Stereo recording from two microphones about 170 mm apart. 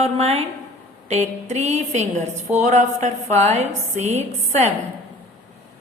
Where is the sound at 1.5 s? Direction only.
40° right (ahead or behind).